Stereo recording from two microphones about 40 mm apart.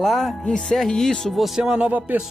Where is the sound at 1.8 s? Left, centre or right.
Right.